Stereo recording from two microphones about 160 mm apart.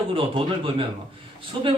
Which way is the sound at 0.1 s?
35° right (ahead or behind).